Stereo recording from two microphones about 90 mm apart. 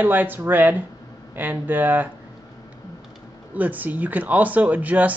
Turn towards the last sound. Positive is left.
turn(degrees=-15)  # may be behind; listen again after turning